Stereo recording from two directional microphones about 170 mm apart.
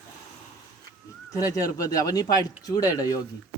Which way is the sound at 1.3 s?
20° left (ahead or behind).